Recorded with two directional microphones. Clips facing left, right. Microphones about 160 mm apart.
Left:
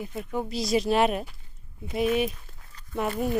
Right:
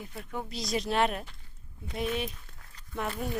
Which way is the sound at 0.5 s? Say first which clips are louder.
Left 6 dB; 5° left (ahead or behind).